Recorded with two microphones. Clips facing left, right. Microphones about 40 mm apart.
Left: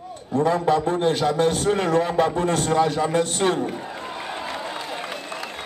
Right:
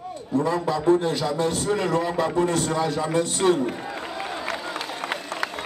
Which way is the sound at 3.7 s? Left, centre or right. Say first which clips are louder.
Right 1 dB; centre.